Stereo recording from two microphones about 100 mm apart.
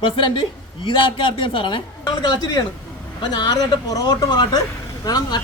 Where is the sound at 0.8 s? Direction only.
60° left (ahead or behind).